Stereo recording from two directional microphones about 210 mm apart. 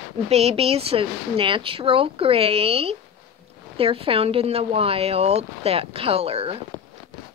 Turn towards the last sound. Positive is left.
turn(degrees=-30)  # may be behind; listen again after turning